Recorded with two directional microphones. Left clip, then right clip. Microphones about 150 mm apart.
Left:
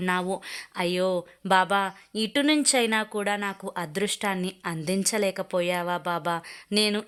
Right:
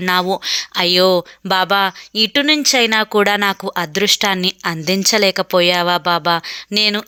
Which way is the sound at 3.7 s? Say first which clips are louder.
Right 13 dB; 20° right (ahead or behind).